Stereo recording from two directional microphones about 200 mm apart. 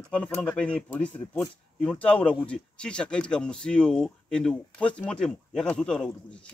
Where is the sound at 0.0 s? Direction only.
5° left (ahead or behind).